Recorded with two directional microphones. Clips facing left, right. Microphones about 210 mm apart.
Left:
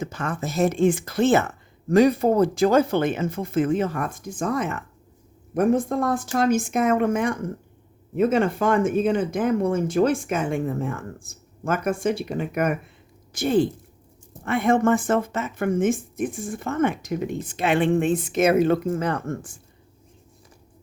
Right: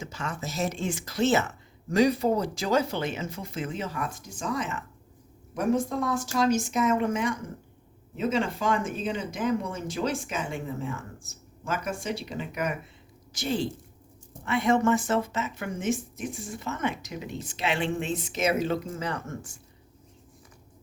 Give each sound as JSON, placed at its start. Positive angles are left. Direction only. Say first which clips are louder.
{"t": 0.0, "sound": "speech", "louder": "left 6 dB", "side_deg": 55}